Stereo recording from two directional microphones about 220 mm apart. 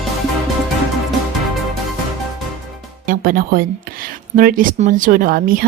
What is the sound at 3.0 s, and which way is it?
Speech, 40° right (ahead or behind).